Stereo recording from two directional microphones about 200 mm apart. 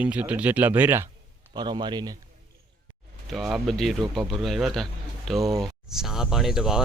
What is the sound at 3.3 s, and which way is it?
Speech, centre (ahead or behind).